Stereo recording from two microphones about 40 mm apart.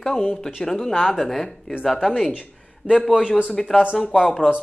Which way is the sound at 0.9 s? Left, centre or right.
Centre.